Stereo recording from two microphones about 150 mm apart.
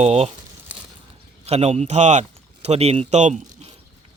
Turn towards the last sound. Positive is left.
turn(degrees=-50)  # may be behind; listen again after turning